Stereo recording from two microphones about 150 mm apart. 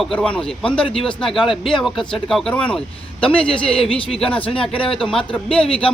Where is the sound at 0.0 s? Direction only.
5° left (ahead or behind).